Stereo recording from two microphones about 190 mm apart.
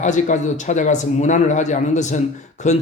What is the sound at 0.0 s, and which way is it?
A man's voice, 40° left (ahead or behind).